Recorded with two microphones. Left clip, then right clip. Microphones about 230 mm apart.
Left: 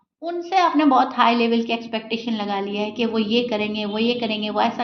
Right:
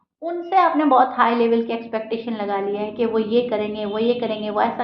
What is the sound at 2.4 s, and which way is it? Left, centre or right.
Speech, left.